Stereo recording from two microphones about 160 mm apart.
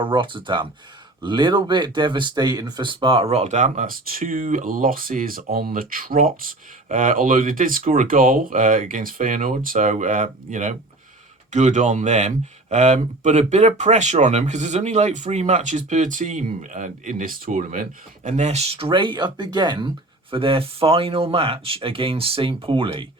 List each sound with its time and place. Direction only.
0.0 s speech: 30° right (ahead or behind)